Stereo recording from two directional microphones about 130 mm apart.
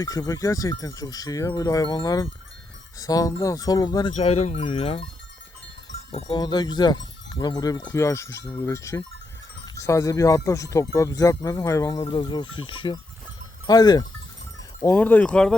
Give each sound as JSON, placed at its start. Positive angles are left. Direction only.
{"t": 0.0, "sound": "speech", "side_deg": 25}
{"t": 4.1, "sound": "a sound", "side_deg": 55}
{"t": 6.3, "sound": "speech", "side_deg": 30}
{"t": 14.8, "sound": "speech", "side_deg": 15}